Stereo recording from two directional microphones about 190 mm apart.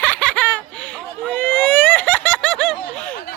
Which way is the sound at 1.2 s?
10° left (ahead or behind).